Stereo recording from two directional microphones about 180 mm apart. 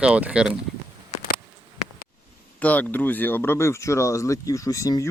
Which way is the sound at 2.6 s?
10° left (ahead or behind).